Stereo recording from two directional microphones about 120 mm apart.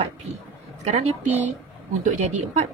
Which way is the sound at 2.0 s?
90° right.